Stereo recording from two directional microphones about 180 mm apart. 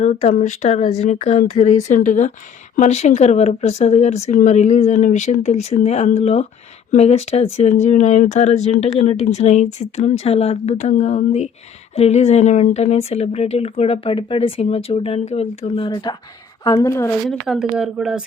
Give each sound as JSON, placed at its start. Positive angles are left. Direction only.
{"t": 0.0, "sound": "a woman's voice", "side_deg": 40}
{"t": 17.2, "sound": "speech", "side_deg": 0}